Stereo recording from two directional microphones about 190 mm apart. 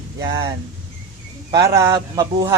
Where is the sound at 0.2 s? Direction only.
20° right (ahead or behind).